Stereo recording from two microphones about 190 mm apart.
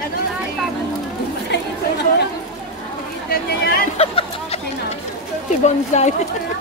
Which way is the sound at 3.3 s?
50° left (ahead or behind).